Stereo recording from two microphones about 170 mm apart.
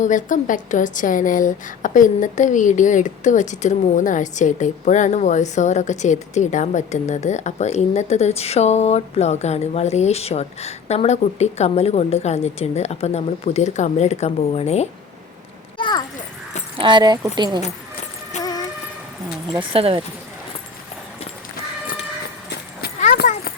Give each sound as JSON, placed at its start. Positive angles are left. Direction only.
{"t": 0.0, "sound": "a woman's voice", "side_deg": 50}
{"t": 15.8, "sound": "a child's voice", "side_deg": 25}
{"t": 16.7, "sound": "speech", "side_deg": -30}
{"t": 18.3, "sound": "music", "side_deg": 45}
{"t": 19.5, "sound": "speech", "side_deg": -30}